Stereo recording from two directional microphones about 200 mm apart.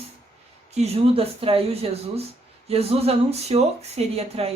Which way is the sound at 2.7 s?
30° right (ahead or behind).